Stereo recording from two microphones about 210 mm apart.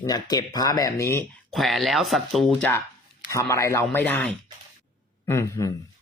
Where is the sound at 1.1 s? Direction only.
Centre (ahead or behind).